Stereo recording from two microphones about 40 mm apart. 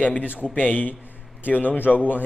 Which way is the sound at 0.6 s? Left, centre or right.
Left.